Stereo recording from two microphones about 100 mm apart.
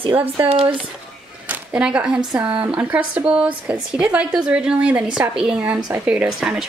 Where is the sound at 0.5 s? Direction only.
65° right (ahead or behind).